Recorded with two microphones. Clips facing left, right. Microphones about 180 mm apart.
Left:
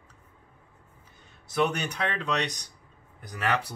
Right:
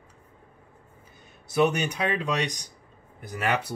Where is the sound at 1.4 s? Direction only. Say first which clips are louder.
Right 4 dB; 10° right (ahead or behind).